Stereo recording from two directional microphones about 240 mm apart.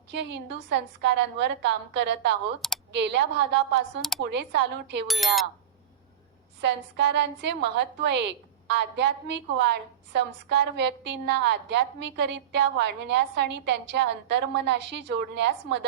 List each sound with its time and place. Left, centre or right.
0.1 s a woman's voice: right
5.0 s speech: centre
6.6 s a woman's voice: right